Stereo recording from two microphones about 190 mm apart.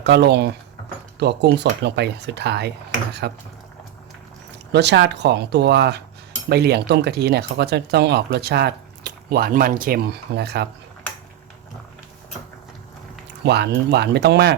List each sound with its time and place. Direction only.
0.0 s speech: 60° right (ahead or behind)
4.7 s speech: 65° right (ahead or behind)
13.4 s speech: 60° right (ahead or behind)